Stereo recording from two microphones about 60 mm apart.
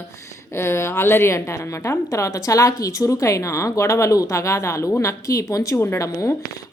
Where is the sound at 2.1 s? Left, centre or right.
Left.